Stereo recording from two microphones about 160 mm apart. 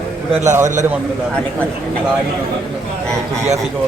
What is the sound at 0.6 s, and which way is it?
Speech, 50° right (ahead or behind).